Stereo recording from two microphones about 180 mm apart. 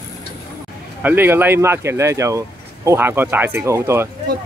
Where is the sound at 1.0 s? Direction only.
10° right (ahead or behind).